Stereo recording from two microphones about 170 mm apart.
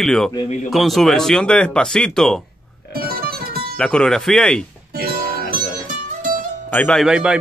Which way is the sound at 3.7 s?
5° left (ahead or behind).